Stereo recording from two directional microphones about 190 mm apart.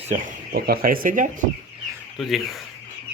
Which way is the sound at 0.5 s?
55° right (ahead or behind).